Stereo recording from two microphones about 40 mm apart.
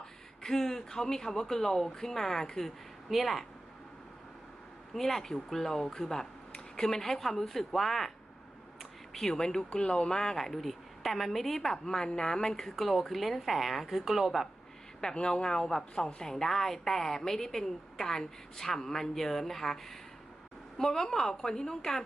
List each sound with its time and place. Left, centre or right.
0.0 s a woman's voice: centre
4.9 s a woman's voice: centre
8.8 s a sound: centre
9.7 s a woman's voice: left; by 14.4 s centre
15.0 s speech: left
16.3 s a woman's voice: centre